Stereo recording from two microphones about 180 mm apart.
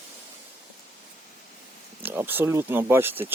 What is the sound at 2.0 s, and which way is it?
Speech, 10° right (ahead or behind).